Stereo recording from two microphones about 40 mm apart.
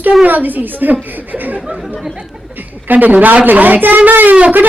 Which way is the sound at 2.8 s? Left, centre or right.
Right.